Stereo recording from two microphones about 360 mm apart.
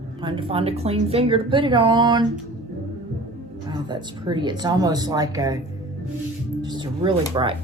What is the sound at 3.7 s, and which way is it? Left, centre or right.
A woman's voice, centre.